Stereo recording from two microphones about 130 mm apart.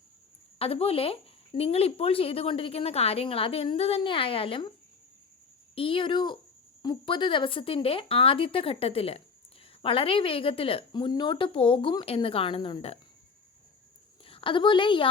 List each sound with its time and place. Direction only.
0.6 s speech: 50° left (ahead or behind)
5.7 s speech: 45° left (ahead or behind)
14.3 s a woman's voice: 45° left (ahead or behind)